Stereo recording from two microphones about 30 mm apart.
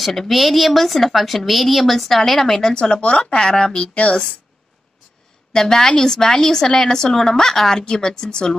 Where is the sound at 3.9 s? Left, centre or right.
Left.